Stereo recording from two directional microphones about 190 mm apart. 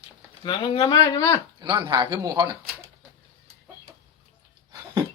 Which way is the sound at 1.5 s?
25° right (ahead or behind).